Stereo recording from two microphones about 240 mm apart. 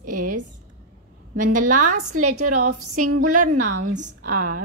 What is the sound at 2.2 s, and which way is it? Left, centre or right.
A woman's voice, right.